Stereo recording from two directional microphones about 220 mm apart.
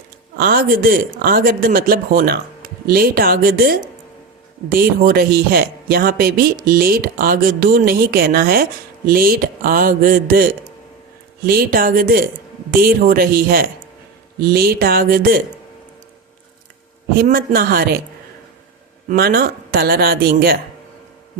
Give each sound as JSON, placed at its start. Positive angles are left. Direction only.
{"t": 0.3, "sound": "speech", "side_deg": -40}
{"t": 17.2, "sound": "speech", "side_deg": -40}
{"t": 19.0, "sound": "speech", "side_deg": -45}